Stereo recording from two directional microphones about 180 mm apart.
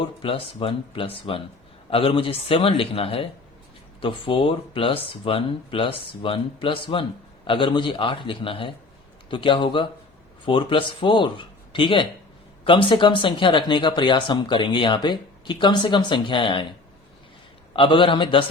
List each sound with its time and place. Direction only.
0.0 s a man's voice: 30° left (ahead or behind)
17.7 s speech: 25° left (ahead or behind)